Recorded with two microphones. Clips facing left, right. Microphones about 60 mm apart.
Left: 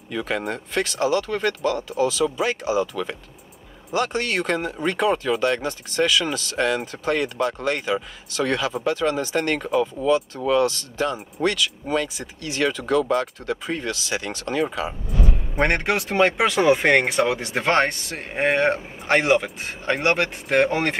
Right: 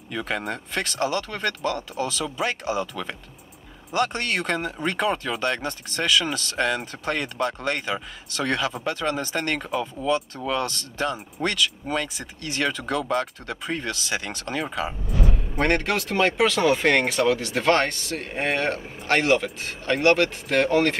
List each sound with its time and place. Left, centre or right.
0.1 s speech: centre
15.6 s speech: left